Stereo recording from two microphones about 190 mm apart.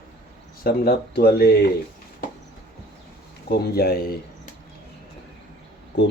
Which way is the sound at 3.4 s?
55° left (ahead or behind).